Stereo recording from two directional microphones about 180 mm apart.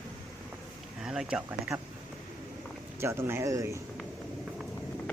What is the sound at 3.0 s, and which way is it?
Speech, 15° right (ahead or behind).